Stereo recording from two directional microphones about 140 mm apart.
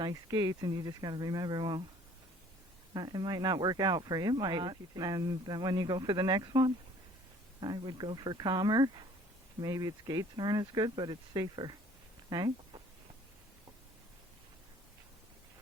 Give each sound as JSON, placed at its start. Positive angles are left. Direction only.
{"t": 0.0, "sound": "speech", "side_deg": -25}
{"t": 2.9, "sound": "speech", "side_deg": -30}